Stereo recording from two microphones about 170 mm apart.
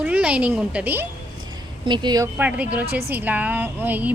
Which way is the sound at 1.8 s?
25° right (ahead or behind).